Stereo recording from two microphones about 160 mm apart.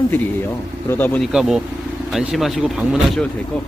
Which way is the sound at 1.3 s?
5° right (ahead or behind).